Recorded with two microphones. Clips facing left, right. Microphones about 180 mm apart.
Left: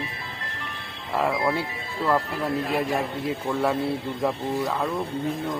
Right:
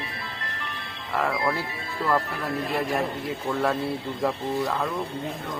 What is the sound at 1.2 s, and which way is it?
Speech, 20° left (ahead or behind).